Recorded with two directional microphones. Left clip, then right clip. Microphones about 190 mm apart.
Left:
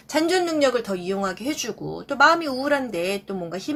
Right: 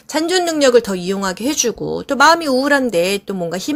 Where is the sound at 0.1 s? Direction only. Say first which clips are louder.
Right 4 dB; 45° right (ahead or behind).